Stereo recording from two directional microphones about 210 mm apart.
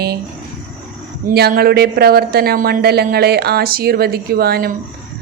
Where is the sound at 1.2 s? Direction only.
50° right (ahead or behind).